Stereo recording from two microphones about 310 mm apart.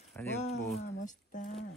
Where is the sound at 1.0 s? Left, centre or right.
Left.